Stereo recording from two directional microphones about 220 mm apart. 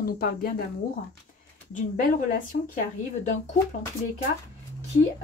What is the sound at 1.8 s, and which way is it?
Speech, 35° left (ahead or behind).